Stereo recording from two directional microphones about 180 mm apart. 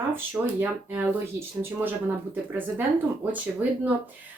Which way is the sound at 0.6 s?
10° right (ahead or behind).